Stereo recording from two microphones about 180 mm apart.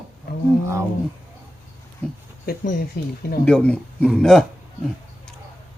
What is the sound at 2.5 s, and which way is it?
Speech, 55° left (ahead or behind).